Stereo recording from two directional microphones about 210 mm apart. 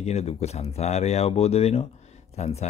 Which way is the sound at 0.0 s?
30° left (ahead or behind).